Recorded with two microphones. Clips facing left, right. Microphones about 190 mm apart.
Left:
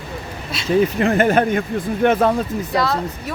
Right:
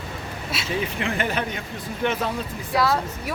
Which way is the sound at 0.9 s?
45° left (ahead or behind).